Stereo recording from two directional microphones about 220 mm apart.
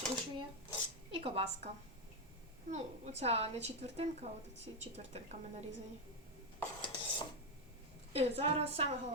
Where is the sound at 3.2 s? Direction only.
30° right (ahead or behind).